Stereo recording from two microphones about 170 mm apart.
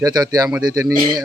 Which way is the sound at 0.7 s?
20° right (ahead or behind).